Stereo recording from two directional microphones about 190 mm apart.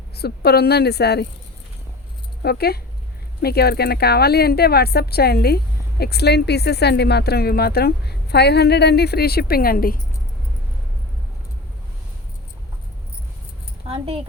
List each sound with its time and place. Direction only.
0.2 s speech: 55° left (ahead or behind)
2.4 s speech: 55° left (ahead or behind)
13.8 s speech: 30° right (ahead or behind)